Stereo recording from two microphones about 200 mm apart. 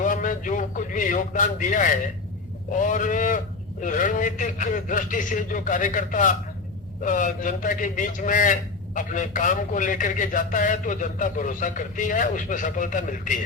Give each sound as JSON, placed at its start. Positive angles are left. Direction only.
{"t": 0.0, "sound": "a man's voice", "side_deg": 40}